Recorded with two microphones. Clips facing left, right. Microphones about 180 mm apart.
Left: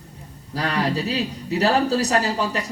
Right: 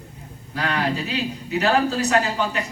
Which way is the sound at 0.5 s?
35° left (ahead or behind).